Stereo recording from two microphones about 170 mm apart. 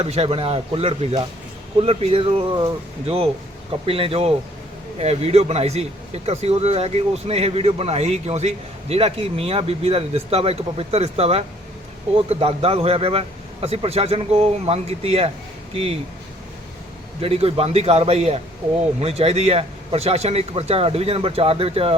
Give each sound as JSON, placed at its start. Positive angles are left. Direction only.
{"t": 0.0, "sound": "a man's voice", "side_deg": -35}
{"t": 3.8, "sound": "a man's voice", "side_deg": -35}
{"t": 17.2, "sound": "a man's voice", "side_deg": -35}